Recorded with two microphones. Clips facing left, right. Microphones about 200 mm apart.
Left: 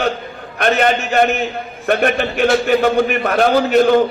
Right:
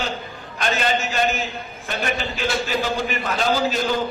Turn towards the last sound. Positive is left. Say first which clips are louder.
# left 9 dB
turn(degrees=60)  # may be behind; listen again after turning